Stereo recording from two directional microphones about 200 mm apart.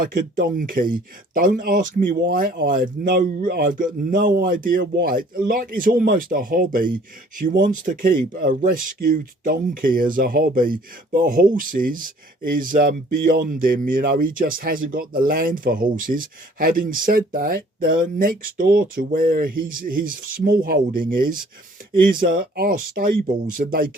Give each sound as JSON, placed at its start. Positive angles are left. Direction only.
{"t": 0.0, "sound": "speech", "side_deg": -45}